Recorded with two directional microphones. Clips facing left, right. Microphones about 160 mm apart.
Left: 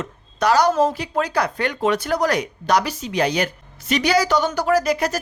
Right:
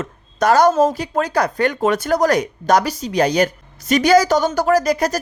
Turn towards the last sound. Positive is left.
turn(degrees=-40)  # may be behind; listen again after turning